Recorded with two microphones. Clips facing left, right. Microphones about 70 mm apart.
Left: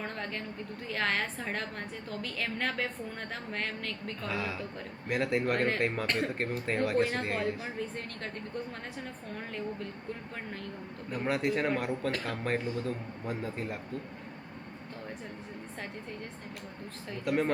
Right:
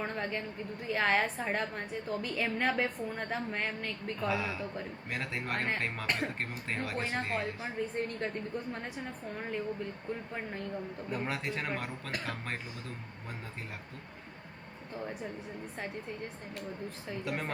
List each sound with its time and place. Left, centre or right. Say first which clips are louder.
0.0 s a sound: right 2 dB; centre
0.9 s a woman's voice: right 3 dB; centre
7.9 s a woman's voice: right 5 dB; centre
11.1 s speech: left 6 dB; centre
17.2 s speech: left 8 dB; centre